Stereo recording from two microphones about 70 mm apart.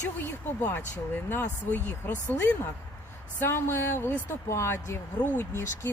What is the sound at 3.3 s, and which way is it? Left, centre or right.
Speech, left.